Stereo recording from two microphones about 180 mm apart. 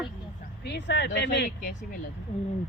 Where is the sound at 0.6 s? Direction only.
70° left (ahead or behind).